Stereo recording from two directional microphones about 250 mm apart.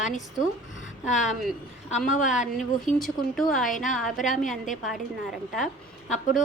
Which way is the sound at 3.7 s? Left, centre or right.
Left.